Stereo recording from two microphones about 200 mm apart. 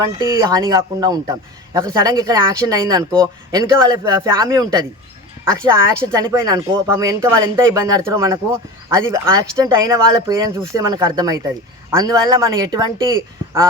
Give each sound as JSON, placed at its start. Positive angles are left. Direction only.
{"t": 0.0, "sound": "a man's voice", "side_deg": -20}